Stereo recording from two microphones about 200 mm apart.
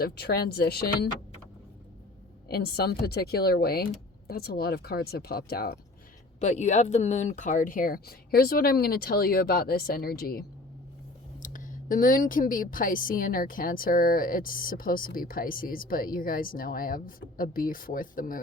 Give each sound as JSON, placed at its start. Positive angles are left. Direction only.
{"t": 0.0, "sound": "a woman's voice", "side_deg": 50}
{"t": 2.5, "sound": "a woman's voice", "side_deg": 50}
{"t": 6.4, "sound": "a woman's voice", "side_deg": 35}
{"t": 11.4, "sound": "a woman's voice", "side_deg": 40}